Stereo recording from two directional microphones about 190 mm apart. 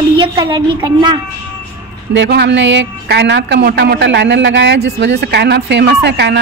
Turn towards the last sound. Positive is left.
turn(degrees=-60)  # may be behind; listen again after turning